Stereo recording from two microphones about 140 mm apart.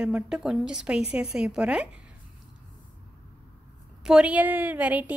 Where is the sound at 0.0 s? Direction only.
5° right (ahead or behind).